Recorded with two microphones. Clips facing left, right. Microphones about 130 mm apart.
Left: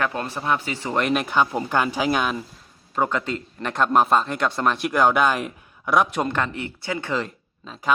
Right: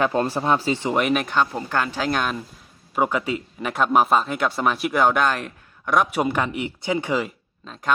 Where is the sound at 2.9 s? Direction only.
10° right (ahead or behind).